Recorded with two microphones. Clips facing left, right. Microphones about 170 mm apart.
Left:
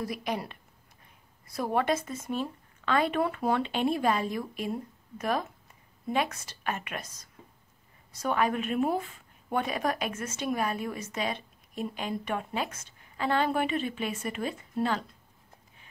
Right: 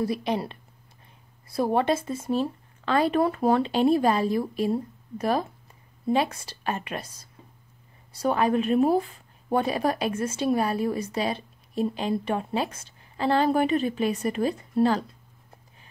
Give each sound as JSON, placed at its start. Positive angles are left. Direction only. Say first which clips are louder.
{"t": 0.0, "sound": "a woman's voice", "louder": "right 6 dB", "side_deg": -30}